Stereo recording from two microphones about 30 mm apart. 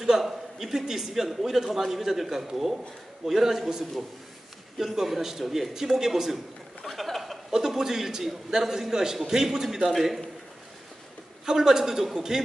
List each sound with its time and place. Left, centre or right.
0.2 s a man's voice: centre
4.9 s a man's voice: centre
6.9 s a sound: centre
7.5 s a man's voice: centre
9.8 s a man's voice: centre
11.4 s a man's voice: centre